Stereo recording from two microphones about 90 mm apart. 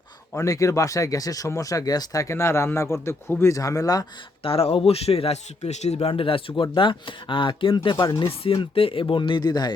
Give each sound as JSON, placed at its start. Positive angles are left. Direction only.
{"t": 0.3, "sound": "speech", "side_deg": 35}
{"t": 4.4, "sound": "speech", "side_deg": 90}
{"t": 8.1, "sound": "speech", "side_deg": 80}